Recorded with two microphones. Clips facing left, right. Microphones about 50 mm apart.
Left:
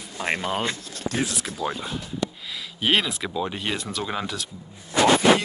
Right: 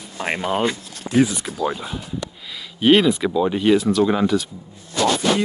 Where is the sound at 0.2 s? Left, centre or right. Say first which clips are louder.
Right 5 dB; centre.